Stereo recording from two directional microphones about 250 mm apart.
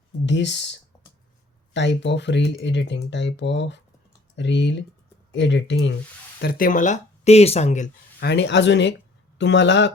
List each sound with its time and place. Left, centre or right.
0.3 s speech: left
6.4 s speech: left
8.2 s speech: left